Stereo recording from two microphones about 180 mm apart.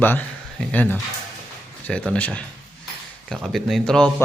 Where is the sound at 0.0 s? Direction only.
10° left (ahead or behind).